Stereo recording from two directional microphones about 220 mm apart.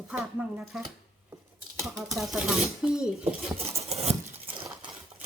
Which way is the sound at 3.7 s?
30° right (ahead or behind).